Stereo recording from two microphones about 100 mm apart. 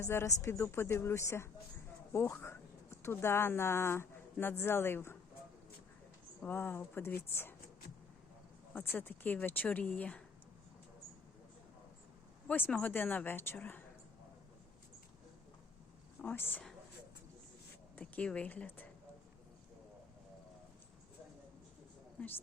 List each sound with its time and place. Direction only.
0.0 s speech: 25° left (ahead or behind)
6.4 s speech: 20° left (ahead or behind)
8.7 s speech: 20° left (ahead or behind)
12.5 s speech: 15° left (ahead or behind)
16.2 s speech: 20° left (ahead or behind)
17.9 s speech: 15° left (ahead or behind)
22.2 s speech: 15° left (ahead or behind)